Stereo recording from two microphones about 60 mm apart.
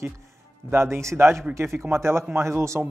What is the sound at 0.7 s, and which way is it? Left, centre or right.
Speech, right.